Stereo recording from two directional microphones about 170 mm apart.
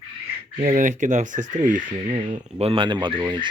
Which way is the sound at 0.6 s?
50° right (ahead or behind).